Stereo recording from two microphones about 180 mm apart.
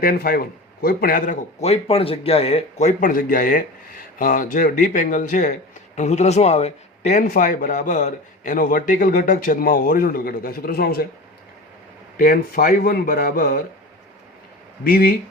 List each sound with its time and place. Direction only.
0.0 s speech: 55° left (ahead or behind)
1.5 s a man's voice: 35° left (ahead or behind); by 11.0 s 60° left (ahead or behind)
12.1 s a man's voice: 50° left (ahead or behind)
14.8 s a man's voice: 55° left (ahead or behind)